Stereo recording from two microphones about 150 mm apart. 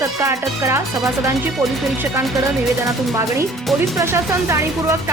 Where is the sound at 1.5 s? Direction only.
Centre (ahead or behind).